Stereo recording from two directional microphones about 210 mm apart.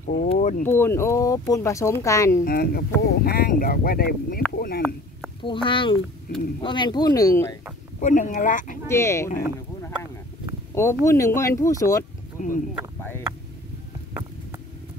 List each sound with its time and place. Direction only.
0.0 s speech: 40° left (ahead or behind)
0.7 s speech: 10° left (ahead or behind)
2.4 s speech: 45° left (ahead or behind)
5.4 s speech: 25° left (ahead or behind)
6.3 s speech: 45° left (ahead or behind)
6.6 s speech: 20° left (ahead or behind)
8.0 s speech: 35° left (ahead or behind)
8.8 s speech: 15° left (ahead or behind)
10.7 s a sound: 15° left (ahead or behind)
11.1 s speech: 15° left (ahead or behind)
12.4 s speech: 40° left (ahead or behind)